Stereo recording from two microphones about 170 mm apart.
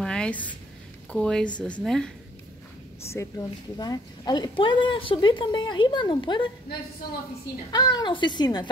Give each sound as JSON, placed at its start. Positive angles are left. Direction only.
{"t": 0.0, "sound": "a sound", "side_deg": 5}
{"t": 1.1, "sound": "a woman's voice", "side_deg": 5}
{"t": 3.1, "sound": "a woman's voice", "side_deg": 15}
{"t": 7.7, "sound": "a woman's voice", "side_deg": 25}